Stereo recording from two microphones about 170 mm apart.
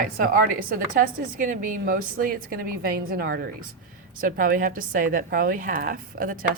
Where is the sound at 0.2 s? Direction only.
55° right (ahead or behind); by 3.5 s 80° right.